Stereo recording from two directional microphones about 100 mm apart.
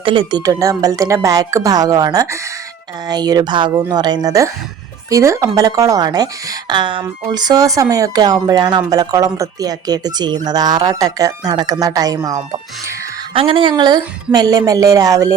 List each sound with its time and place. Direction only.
0.0 s speech: 60° right (ahead or behind); by 6.2 s 40° right (ahead or behind)
6.7 s speech: 50° right (ahead or behind)
13.3 s speech: 65° right (ahead or behind); by 15.3 s 35° right (ahead or behind)